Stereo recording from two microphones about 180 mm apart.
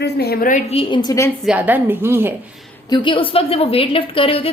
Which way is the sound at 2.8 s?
25° left (ahead or behind).